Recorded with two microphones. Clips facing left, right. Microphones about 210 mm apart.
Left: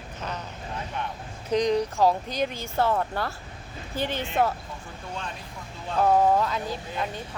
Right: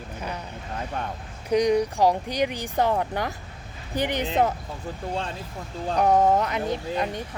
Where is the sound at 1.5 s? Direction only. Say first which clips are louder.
Right 3 dB; 10° right (ahead or behind).